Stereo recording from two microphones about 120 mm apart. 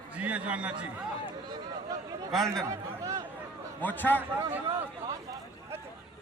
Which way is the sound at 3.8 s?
15° left (ahead or behind).